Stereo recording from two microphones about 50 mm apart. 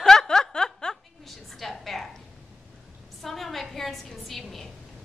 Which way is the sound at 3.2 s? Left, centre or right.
Centre.